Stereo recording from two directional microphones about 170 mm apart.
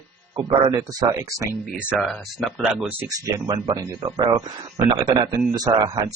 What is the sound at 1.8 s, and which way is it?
Speech, 5° right (ahead or behind).